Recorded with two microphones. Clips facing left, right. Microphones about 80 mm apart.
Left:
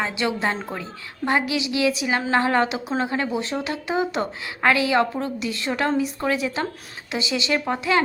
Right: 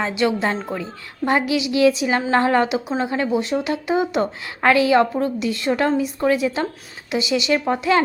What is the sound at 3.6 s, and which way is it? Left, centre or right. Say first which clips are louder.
A woman's voice: right 4 dB; right.